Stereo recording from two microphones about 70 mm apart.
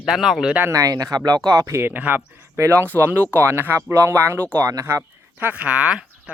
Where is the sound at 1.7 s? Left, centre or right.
Right.